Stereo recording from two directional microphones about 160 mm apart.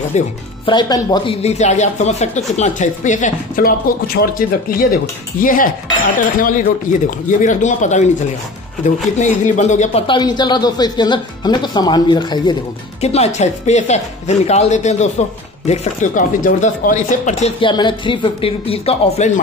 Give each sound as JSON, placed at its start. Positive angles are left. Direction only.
{"t": 0.1, "sound": "speech", "side_deg": 45}
{"t": 0.7, "sound": "speech", "side_deg": 25}
{"t": 1.4, "sound": "speech", "side_deg": 45}
{"t": 10.0, "sound": "speech", "side_deg": 25}
{"t": 13.0, "sound": "speech", "side_deg": 40}
{"t": 17.6, "sound": "speech", "side_deg": 30}